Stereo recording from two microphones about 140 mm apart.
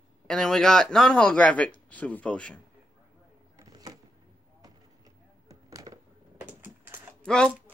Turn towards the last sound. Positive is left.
turn(degrees=5)  # may be behind; listen again after turning